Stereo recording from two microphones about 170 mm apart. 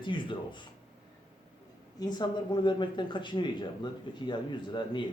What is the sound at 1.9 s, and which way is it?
Speech, 25° left (ahead or behind).